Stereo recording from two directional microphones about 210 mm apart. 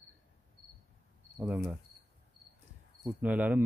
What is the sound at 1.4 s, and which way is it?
Speech, 5° right (ahead or behind).